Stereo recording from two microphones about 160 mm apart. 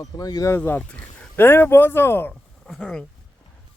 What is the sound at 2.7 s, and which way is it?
Speech, centre (ahead or behind).